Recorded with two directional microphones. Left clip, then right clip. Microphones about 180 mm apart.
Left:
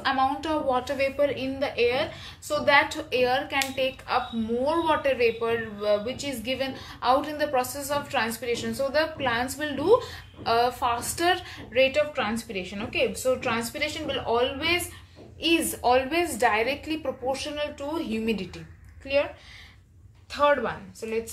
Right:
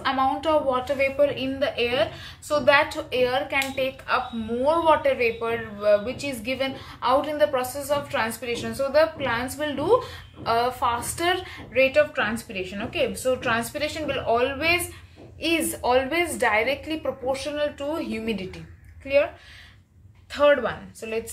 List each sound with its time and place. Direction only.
0.0 s a woman's voice: 20° left (ahead or behind)
20.3 s speech: 10° left (ahead or behind)